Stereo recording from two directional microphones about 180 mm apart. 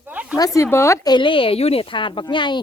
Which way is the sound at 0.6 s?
15° left (ahead or behind).